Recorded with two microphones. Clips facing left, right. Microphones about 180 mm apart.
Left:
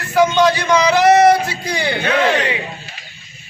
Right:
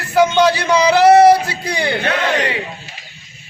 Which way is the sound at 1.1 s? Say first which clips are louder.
Right 3 dB; 30° right (ahead or behind).